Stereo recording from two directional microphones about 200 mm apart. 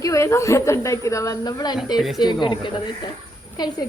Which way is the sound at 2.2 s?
20° left (ahead or behind).